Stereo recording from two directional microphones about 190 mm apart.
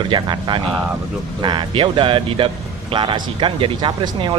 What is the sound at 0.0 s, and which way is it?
Speech, 25° right (ahead or behind).